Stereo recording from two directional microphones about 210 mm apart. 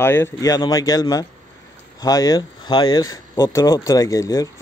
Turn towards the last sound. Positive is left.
turn(degrees=15)  # may be behind; listen again after turning